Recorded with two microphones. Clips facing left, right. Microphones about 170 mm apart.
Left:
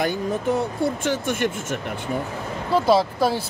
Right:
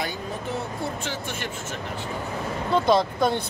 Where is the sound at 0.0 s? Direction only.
50° left (ahead or behind).